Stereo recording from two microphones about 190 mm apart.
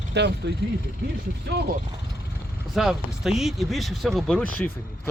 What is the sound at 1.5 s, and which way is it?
Speech, 60° right (ahead or behind).